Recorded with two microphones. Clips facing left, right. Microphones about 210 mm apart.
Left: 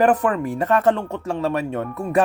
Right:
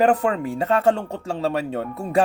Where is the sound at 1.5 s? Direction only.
30° right (ahead or behind).